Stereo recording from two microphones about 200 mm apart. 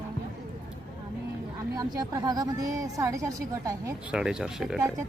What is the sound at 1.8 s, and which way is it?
Speech, 20° right (ahead or behind).